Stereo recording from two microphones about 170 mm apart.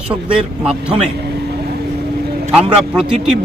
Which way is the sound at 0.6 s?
5° right (ahead or behind).